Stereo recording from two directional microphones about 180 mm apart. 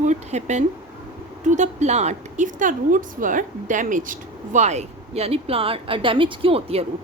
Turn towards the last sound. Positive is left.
turn(degrees=-35)  # may be behind; listen again after turning